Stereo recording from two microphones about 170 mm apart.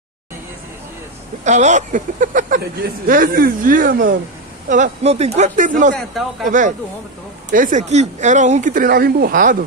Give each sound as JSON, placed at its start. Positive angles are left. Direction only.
{"t": 1.4, "sound": "speech", "side_deg": -45}